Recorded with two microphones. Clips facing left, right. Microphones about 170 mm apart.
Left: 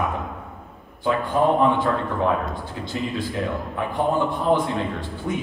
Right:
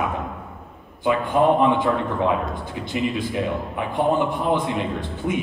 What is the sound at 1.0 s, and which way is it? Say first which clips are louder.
A man's voice: right 2 dB; 15° right (ahead or behind).